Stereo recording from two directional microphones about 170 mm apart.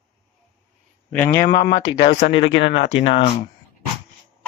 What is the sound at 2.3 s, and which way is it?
Speech, 90° left.